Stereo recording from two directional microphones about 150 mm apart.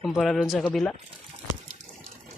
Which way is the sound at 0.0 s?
Centre (ahead or behind).